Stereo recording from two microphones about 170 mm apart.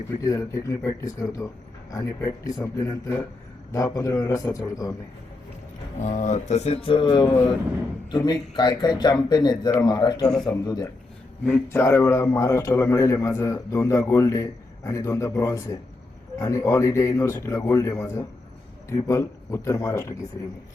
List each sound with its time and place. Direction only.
0.2 s a man's voice: 20° left (ahead or behind)
3.7 s a man's voice: 20° left (ahead or behind)
6.0 s a man's voice: 45° left (ahead or behind); by 20.1 s 15° left (ahead or behind)